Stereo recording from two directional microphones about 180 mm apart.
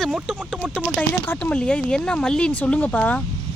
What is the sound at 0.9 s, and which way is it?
Speech, 10° left (ahead or behind).